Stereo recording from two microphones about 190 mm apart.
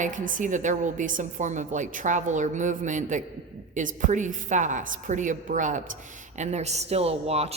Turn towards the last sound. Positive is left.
turn(degrees=-30)  # may be behind; listen again after turning